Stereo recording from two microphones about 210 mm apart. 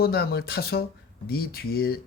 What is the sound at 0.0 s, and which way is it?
A man's voice, 50° left (ahead or behind).